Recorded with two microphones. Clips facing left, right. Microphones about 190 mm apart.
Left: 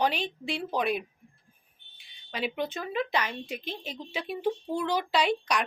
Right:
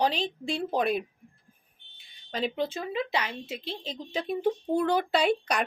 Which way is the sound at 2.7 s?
25° right (ahead or behind).